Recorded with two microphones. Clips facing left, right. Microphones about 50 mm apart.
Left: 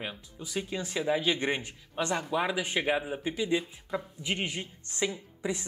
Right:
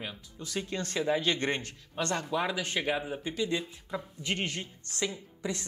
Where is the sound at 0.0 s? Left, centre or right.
Centre.